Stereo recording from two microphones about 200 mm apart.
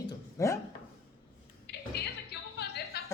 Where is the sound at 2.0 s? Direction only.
55° left (ahead or behind).